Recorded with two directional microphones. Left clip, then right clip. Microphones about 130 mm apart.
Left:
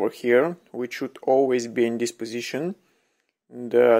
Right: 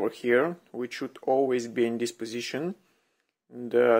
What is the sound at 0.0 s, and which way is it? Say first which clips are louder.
Speech: left 4 dB; 20° left (ahead or behind).